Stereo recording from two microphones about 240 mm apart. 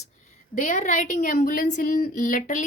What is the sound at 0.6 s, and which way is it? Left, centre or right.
A woman's voice, left.